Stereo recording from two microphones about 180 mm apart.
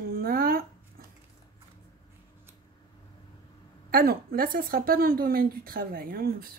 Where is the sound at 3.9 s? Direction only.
55° right (ahead or behind).